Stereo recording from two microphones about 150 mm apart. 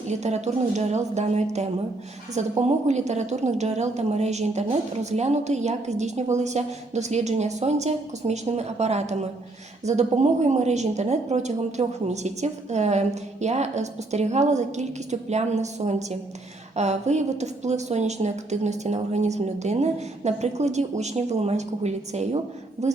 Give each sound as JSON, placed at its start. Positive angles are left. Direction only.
{"t": 0.1, "sound": "a woman's voice", "side_deg": -50}